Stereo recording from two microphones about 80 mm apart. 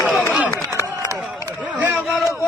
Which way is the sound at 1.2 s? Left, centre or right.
Right.